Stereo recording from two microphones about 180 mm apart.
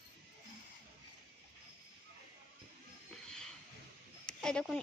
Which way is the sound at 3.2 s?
5° left (ahead or behind).